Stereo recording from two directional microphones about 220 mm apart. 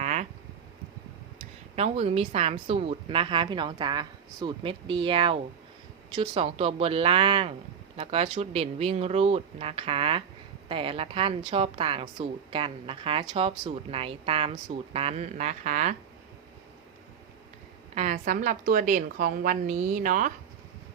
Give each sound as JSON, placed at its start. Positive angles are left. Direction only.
{"t": 0.0, "sound": "a sound", "side_deg": -30}
{"t": 1.7, "sound": "speech", "side_deg": -30}
{"t": 17.9, "sound": "a woman's voice", "side_deg": -30}